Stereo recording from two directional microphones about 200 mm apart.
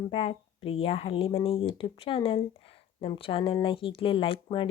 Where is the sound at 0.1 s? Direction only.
30° left (ahead or behind).